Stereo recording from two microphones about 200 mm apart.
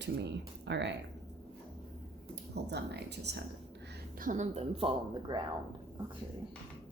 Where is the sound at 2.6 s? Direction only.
55° right (ahead or behind).